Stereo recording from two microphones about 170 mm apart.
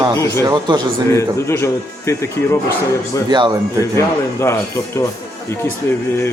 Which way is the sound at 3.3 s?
25° right (ahead or behind).